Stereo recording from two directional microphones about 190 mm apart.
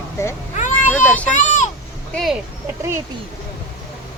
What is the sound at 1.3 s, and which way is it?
Speech, 40° left (ahead or behind).